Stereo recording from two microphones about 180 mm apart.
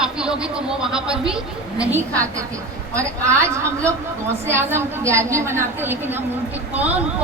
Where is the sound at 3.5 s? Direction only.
15° right (ahead or behind).